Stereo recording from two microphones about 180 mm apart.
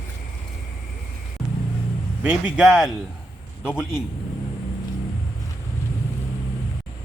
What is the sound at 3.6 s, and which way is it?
Speech, 10° left (ahead or behind).